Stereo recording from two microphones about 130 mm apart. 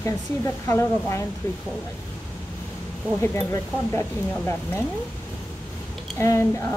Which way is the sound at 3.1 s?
20° left (ahead or behind).